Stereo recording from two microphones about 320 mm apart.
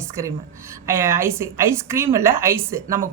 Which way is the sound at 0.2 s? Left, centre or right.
Centre.